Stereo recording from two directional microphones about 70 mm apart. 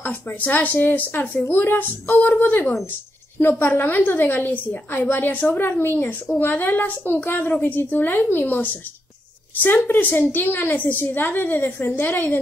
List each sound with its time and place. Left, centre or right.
0.0 s a woman's voice: left